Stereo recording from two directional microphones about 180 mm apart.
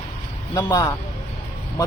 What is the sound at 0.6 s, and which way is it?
Speech, 20° left (ahead or behind).